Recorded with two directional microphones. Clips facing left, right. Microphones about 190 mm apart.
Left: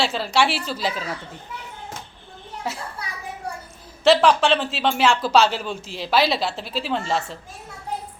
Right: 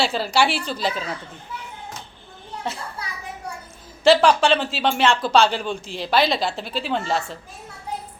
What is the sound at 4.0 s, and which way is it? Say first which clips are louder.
Speech: right 1 dB; centre (ahead or behind).